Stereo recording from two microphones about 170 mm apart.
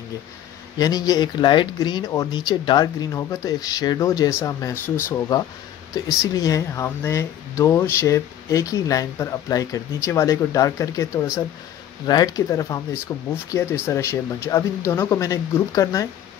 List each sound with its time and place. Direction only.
0.7 s speech: 20° left (ahead or behind)